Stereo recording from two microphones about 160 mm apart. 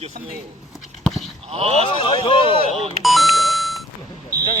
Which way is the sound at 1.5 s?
40° right (ahead or behind).